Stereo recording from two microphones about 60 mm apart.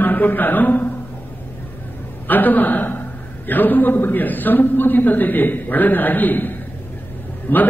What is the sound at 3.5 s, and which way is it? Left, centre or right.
A man's voice, left.